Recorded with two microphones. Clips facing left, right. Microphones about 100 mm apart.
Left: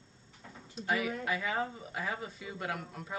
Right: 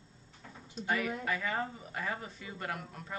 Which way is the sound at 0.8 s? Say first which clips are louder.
Left 1 dB; 5° left (ahead or behind).